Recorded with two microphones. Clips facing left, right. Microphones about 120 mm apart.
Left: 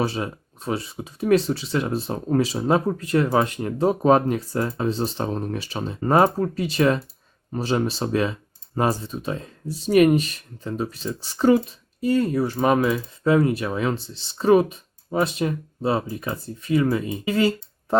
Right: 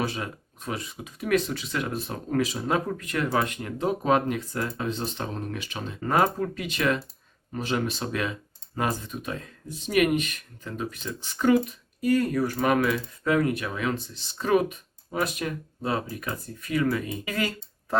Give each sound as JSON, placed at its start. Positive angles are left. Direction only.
{"t": 0.0, "sound": "speech", "side_deg": 30}